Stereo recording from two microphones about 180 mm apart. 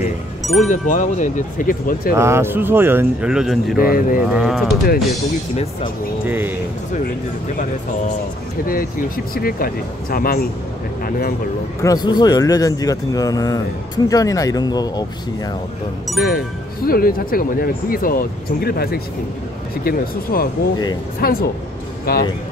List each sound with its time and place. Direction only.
0.6 s speech: 45° left (ahead or behind)
2.1 s speech: 15° right (ahead or behind)
3.8 s speech: 55° left (ahead or behind)
4.3 s speech: 5° right (ahead or behind)
6.2 s speech: 10° right (ahead or behind)
8.6 s speech: 50° left (ahead or behind)
11.8 s speech: 20° left (ahead or behind)
16.8 s speech: 55° left (ahead or behind)